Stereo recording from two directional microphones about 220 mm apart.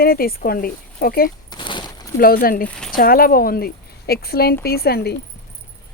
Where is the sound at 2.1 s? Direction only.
40° left (ahead or behind).